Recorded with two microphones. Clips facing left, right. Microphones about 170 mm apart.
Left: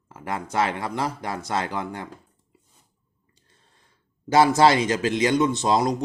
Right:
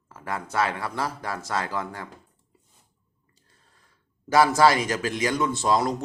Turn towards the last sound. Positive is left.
turn(degrees=20)  # may be behind; listen again after turning